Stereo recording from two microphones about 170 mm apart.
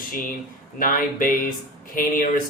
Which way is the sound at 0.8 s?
55° left (ahead or behind).